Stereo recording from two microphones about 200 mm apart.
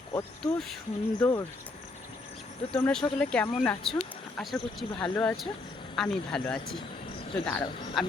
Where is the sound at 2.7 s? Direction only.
5° left (ahead or behind).